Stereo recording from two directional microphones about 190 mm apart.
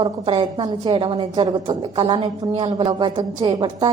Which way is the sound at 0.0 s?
25° right (ahead or behind).